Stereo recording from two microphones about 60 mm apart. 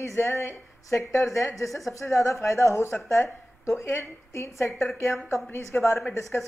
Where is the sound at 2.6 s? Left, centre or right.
Left.